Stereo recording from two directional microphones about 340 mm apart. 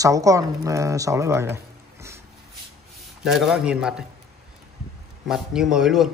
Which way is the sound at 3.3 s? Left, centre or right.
Centre.